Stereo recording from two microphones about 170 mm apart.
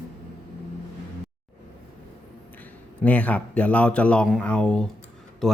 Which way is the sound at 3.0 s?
10° left (ahead or behind).